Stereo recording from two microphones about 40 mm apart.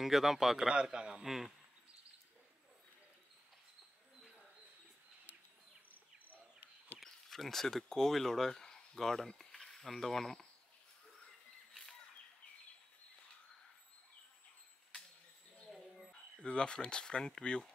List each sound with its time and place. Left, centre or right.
0.0 s speech: centre
0.7 s a man's voice: right
1.2 s speech: centre
7.0 s speech: centre
16.1 s speech: left